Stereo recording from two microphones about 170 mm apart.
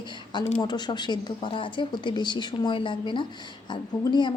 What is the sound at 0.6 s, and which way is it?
A woman's voice, 25° left (ahead or behind).